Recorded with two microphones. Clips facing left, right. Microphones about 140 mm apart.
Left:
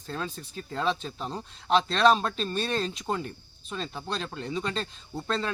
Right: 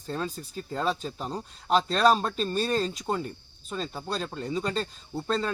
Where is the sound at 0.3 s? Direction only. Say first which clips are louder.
Right 1 dB; 10° right (ahead or behind).